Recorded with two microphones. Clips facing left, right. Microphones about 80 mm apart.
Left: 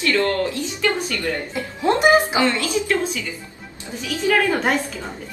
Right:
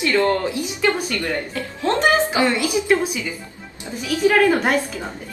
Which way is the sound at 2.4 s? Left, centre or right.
Centre.